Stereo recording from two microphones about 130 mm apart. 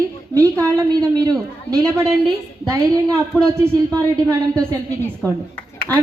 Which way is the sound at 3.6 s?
25° right (ahead or behind).